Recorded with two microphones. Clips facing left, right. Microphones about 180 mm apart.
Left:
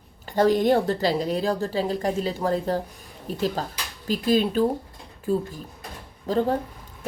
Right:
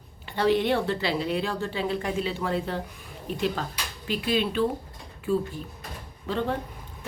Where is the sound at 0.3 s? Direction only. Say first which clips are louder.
Left 4 dB; 40° left (ahead or behind).